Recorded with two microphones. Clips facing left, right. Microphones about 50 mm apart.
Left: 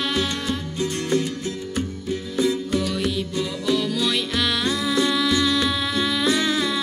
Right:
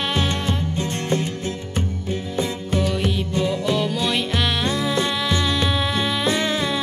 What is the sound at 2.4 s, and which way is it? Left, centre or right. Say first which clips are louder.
Music: left 3 dB; centre.